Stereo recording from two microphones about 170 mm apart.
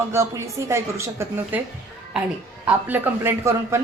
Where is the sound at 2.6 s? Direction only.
10° right (ahead or behind).